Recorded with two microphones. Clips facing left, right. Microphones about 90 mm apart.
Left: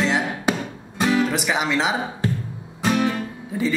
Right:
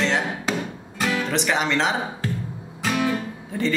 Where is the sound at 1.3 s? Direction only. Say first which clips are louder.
Even; 5° left (ahead or behind).